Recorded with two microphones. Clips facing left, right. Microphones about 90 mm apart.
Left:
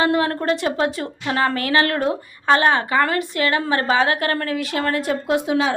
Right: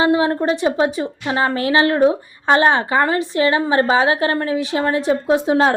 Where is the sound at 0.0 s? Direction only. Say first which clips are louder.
Right 3 dB; 20° right (ahead or behind).